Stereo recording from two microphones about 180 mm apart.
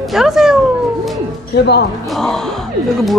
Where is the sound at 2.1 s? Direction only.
Centre (ahead or behind).